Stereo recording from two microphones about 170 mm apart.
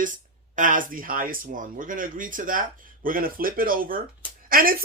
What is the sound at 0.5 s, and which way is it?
Speech, 50° right (ahead or behind).